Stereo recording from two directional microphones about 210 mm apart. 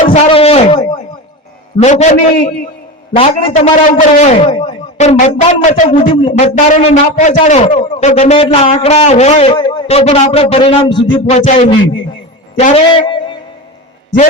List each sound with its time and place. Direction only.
0.3 s a man's voice: 30° left (ahead or behind)